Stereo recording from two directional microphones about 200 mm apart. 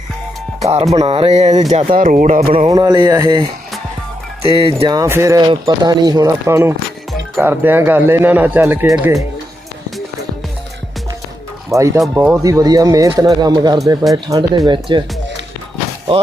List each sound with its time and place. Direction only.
0.6 s speech: 30° right (ahead or behind)
2.7 s speech: 20° right (ahead or behind)
4.8 s speech: 15° right (ahead or behind)
11.7 s speech: 15° right (ahead or behind)
16.1 s speech: 30° right (ahead or behind)